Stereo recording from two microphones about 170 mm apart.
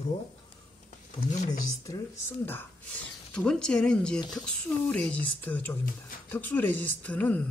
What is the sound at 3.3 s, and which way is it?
Speech, 5° left (ahead or behind).